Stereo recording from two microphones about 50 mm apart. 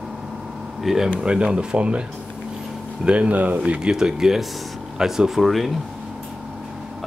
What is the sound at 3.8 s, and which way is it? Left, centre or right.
Speech, centre.